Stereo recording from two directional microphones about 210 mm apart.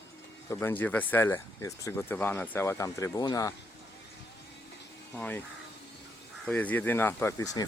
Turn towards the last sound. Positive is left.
turn(degrees=15)  # may be behind; listen again after turning